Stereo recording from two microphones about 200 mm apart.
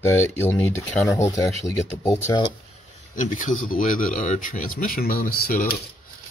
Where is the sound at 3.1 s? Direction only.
40° left (ahead or behind).